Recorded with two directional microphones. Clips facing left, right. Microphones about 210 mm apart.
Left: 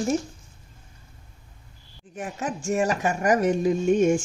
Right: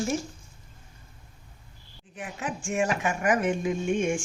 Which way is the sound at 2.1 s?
40° left (ahead or behind).